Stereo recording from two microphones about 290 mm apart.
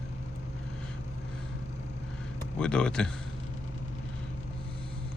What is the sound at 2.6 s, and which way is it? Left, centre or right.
Speech, centre.